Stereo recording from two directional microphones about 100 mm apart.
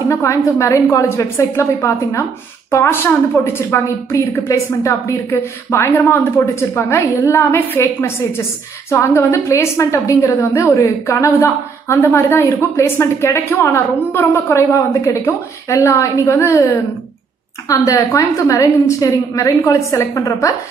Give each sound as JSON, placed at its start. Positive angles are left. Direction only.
{"t": 0.1, "sound": "a woman's voice", "side_deg": 30}